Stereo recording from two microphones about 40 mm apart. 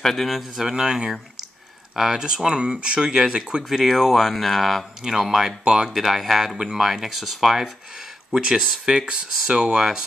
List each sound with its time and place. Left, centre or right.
0.0 s speech: centre
0.7 s speech: centre
3.6 s speech: centre
5.0 s speech: centre
5.9 s speech: centre
8.4 s speech: centre